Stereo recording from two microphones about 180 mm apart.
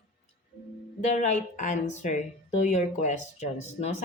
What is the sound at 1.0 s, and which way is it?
Speech, 40° left (ahead or behind).